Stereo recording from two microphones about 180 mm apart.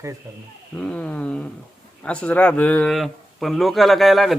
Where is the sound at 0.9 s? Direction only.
5° left (ahead or behind).